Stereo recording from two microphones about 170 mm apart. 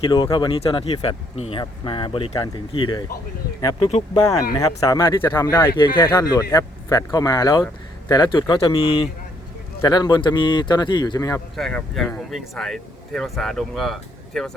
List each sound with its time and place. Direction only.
0.0 s speech: 30° left (ahead or behind)
3.8 s speech: 40° left (ahead or behind)
4.8 s speech: 20° left (ahead or behind)
5.7 s speech: 25° left (ahead or behind)
6.1 s speech: 15° left (ahead or behind)
11.5 s speech: centre (ahead or behind)